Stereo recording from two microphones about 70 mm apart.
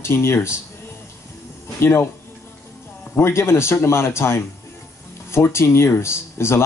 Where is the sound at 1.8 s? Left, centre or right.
Left.